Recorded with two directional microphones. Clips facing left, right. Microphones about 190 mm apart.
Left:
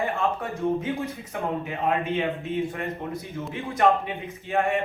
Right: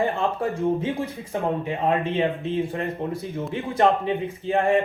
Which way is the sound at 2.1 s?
30° right (ahead or behind).